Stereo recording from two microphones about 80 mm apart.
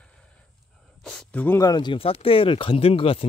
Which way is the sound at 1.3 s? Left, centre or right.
Left.